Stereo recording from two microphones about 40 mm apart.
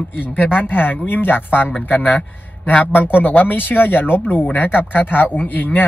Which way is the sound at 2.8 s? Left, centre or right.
Left.